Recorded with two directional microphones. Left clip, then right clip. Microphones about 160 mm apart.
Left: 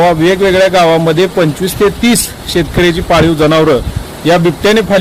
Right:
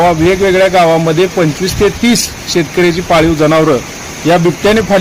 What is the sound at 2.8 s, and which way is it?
A man's voice, 10° left (ahead or behind).